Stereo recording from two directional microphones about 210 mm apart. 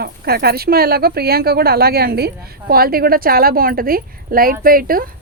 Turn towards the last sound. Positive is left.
turn(degrees=-45)  # may be behind; listen again after turning